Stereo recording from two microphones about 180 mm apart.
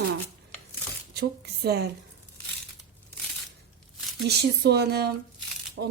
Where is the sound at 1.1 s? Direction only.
65° right (ahead or behind).